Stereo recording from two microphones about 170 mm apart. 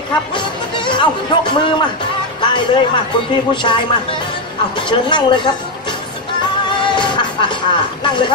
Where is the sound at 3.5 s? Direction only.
30° left (ahead or behind).